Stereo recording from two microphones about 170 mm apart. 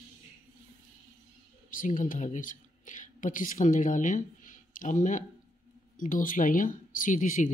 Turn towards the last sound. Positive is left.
turn(degrees=50)  # may be behind; listen again after turning